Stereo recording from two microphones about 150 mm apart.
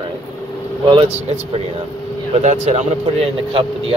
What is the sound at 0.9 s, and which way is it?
Speech, 40° right (ahead or behind).